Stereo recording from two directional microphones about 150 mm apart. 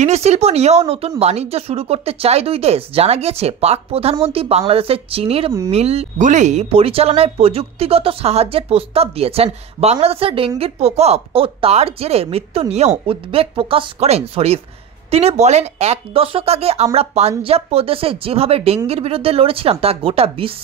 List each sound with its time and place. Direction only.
0.0 s speech: 45° right (ahead or behind)